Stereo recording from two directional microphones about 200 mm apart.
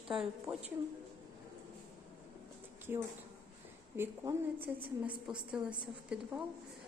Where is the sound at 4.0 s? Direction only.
10° right (ahead or behind).